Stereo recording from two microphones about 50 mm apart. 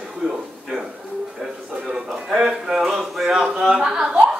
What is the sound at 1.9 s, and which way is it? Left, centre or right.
Speech, centre.